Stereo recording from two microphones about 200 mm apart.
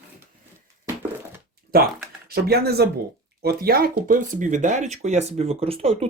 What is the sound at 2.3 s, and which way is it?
Speech, 50° right (ahead or behind).